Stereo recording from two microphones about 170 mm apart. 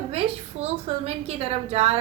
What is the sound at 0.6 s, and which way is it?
A woman's voice, 35° right (ahead or behind).